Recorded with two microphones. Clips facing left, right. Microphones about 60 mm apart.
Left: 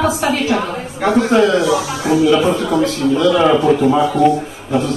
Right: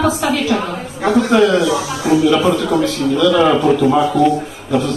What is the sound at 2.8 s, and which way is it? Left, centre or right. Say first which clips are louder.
Speech: even; left.